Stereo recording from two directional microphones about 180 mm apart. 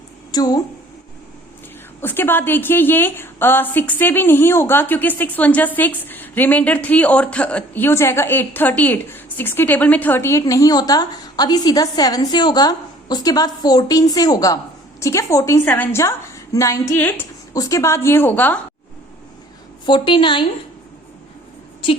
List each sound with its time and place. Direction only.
0.3 s a woman's voice: 20° left (ahead or behind)
2.0 s a woman's voice: 10° left (ahead or behind)
19.8 s a woman's voice: 25° left (ahead or behind)